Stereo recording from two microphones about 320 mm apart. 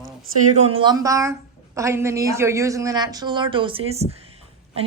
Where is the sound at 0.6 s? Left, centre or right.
Centre.